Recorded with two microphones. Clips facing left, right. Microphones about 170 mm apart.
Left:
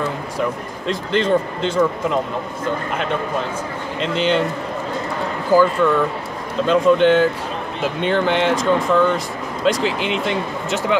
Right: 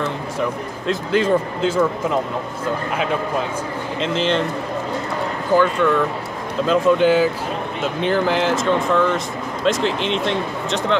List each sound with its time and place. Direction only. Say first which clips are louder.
0.8 s speech: right 1 dB; 5° right (ahead or behind)
4.0 s speech: left 1 dB; centre (ahead or behind)
5.5 s speech: left 2 dB; 5° left (ahead or behind)